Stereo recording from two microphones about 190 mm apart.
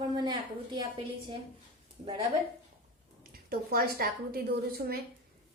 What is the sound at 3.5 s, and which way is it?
Speech, 50° right (ahead or behind).